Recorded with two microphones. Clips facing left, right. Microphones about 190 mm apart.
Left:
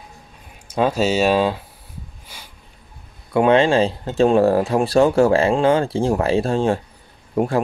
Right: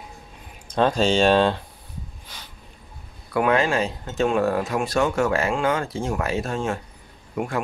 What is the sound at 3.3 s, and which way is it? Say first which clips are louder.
Speech: left 6 dB; 25° left (ahead or behind).